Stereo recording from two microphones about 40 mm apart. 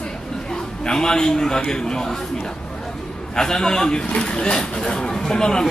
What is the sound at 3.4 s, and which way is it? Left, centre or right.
A man's voice, centre.